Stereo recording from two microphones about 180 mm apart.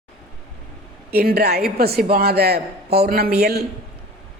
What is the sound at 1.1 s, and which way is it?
A woman's voice, 60° right (ahead or behind).